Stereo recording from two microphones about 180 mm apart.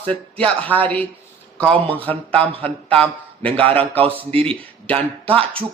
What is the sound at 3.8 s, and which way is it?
Speech, 30° right (ahead or behind).